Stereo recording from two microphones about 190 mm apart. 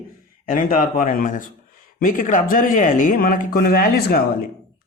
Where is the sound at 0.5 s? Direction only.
45° left (ahead or behind).